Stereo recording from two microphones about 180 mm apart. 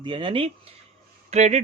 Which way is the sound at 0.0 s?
30° right (ahead or behind).